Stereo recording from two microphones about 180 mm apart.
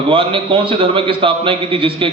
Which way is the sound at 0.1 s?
30° right (ahead or behind).